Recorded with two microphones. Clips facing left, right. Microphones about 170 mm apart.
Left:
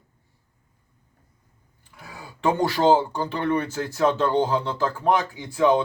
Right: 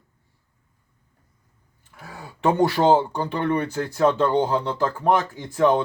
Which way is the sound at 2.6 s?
20° right (ahead or behind).